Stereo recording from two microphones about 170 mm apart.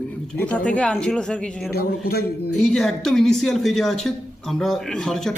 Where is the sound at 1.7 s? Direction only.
65° left (ahead or behind).